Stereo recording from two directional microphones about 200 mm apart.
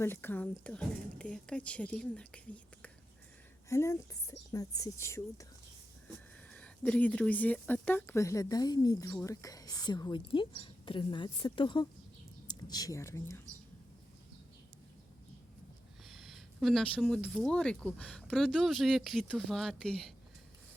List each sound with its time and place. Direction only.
0.0 s speech: 10° left (ahead or behind)
6.5 s speech: 5° left (ahead or behind)
16.0 s speech: centre (ahead or behind)